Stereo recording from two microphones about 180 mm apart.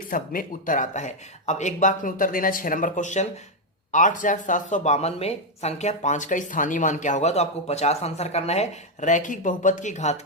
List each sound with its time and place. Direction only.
0.1 s speech: 50° left (ahead or behind)